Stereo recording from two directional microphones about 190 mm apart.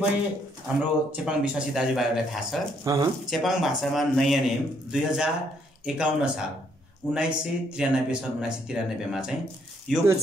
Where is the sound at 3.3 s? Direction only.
Centre (ahead or behind).